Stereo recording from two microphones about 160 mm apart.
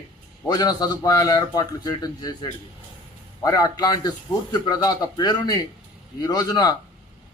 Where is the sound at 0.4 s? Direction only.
25° left (ahead or behind).